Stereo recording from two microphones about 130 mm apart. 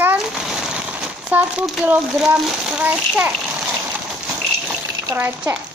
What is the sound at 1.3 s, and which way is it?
Speech, 15° right (ahead or behind).